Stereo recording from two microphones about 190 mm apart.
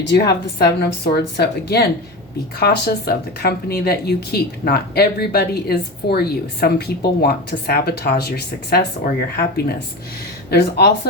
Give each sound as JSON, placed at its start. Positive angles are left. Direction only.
{"t": 0.3, "sound": "speech", "side_deg": 60}